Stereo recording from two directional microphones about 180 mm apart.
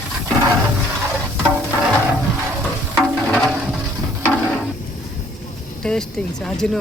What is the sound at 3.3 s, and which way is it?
Music, centre (ahead or behind).